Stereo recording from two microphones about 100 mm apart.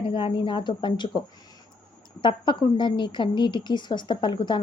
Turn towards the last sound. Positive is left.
turn(degrees=50)  # may be behind; listen again after turning